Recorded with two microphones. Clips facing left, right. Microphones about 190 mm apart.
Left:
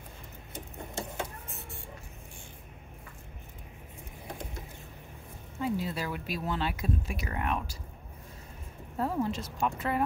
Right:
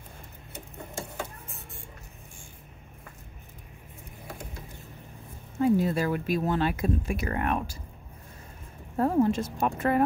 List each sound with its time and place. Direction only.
5.6 s speech: 50° right (ahead or behind)
8.9 s speech: 50° right (ahead or behind)